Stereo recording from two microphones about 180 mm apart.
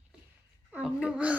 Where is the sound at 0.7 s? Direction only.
5° right (ahead or behind).